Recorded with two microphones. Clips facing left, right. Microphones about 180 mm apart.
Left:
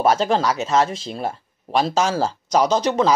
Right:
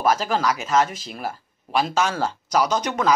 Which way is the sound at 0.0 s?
30° left (ahead or behind).